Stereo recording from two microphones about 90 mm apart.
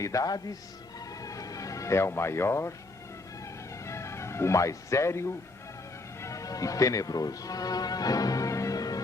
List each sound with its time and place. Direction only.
0.0 s speech: 40° left (ahead or behind)
1.2 s music: 40° left (ahead or behind)
3.8 s speech: 30° left (ahead or behind)